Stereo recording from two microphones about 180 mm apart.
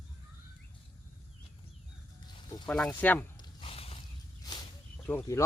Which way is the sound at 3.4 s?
30° left (ahead or behind).